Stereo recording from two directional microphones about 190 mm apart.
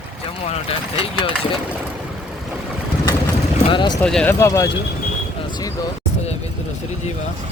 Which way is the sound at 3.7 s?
25° left (ahead or behind).